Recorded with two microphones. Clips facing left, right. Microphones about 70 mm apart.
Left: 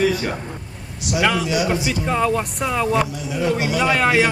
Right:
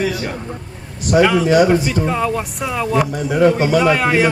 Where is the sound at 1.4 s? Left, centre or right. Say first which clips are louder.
Right 9 dB; right.